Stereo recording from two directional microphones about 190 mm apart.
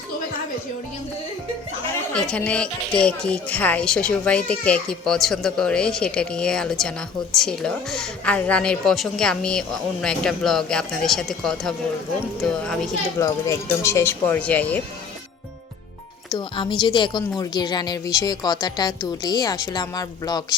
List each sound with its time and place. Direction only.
2.1 s speech: 5° left (ahead or behind)
13.1 s speech: 15° left (ahead or behind)
16.3 s a woman's voice: 25° left (ahead or behind)